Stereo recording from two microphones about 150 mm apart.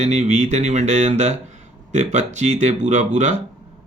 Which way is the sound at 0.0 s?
50° right (ahead or behind).